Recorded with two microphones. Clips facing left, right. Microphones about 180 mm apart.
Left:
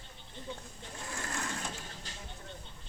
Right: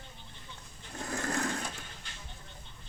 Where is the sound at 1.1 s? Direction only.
40° right (ahead or behind).